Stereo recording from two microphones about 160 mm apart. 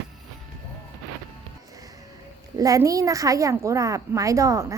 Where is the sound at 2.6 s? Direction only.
20° right (ahead or behind).